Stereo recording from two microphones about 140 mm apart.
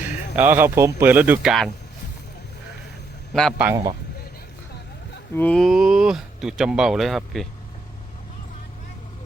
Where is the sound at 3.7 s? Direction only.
30° right (ahead or behind).